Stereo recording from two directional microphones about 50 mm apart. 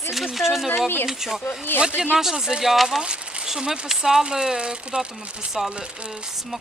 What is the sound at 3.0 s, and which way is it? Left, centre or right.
Speech, centre.